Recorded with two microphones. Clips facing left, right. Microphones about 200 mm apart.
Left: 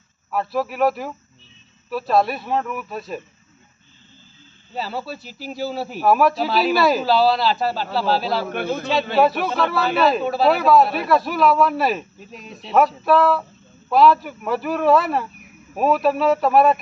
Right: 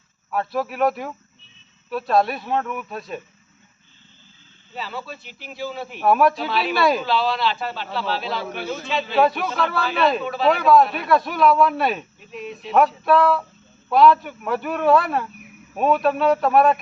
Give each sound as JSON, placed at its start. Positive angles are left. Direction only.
{"t": 0.3, "sound": "a man's voice", "side_deg": 0}
{"t": 4.7, "sound": "speech", "side_deg": 40}
{"t": 6.0, "sound": "a man's voice", "side_deg": 0}
{"t": 6.4, "sound": "speech", "side_deg": 35}
{"t": 6.7, "sound": "a man's voice", "side_deg": 0}
{"t": 7.0, "sound": "speech", "side_deg": 40}
{"t": 8.4, "sound": "speech", "side_deg": 55}
{"t": 9.1, "sound": "a man's voice", "side_deg": 5}
{"t": 10.2, "sound": "speech", "side_deg": 40}
{"t": 10.5, "sound": "a man's voice", "side_deg": 0}
{"t": 12.2, "sound": "speech", "side_deg": 40}
{"t": 12.7, "sound": "a man's voice", "side_deg": 0}